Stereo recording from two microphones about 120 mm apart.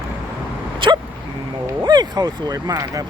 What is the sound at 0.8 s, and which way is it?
Dog, 45° right (ahead or behind).